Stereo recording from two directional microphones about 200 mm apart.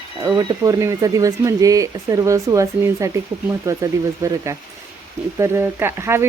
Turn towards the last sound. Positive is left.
turn(degrees=-10)  # may be behind; listen again after turning